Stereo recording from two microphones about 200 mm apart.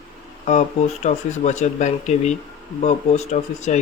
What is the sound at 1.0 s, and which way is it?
Speech, 35° left (ahead or behind).